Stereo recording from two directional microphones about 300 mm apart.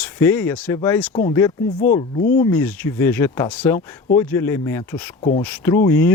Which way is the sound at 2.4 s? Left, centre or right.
Centre.